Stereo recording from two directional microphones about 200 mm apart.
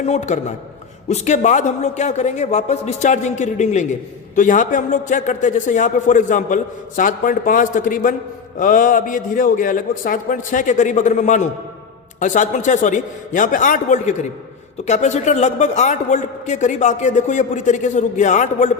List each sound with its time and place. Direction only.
0.0 s a man's voice: 35° left (ahead or behind)